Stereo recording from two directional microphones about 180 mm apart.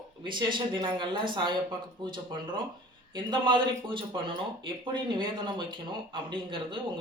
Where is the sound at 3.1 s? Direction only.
25° right (ahead or behind).